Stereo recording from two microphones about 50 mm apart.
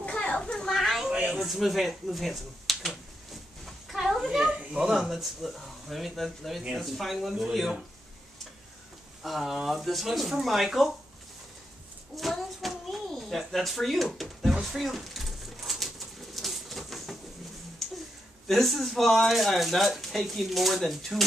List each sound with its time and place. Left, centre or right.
0.0 s children playing: left
0.4 s children playing: centre
0.7 s a sound: centre
1.3 s speech: centre
3.9 s a sound: centre
4.9 s speech: centre
9.2 s speech: centre
12.2 s child singing: centre
13.1 s speech: centre
14.6 s a sound: centre
16.3 s bird: centre
18.5 s speech: centre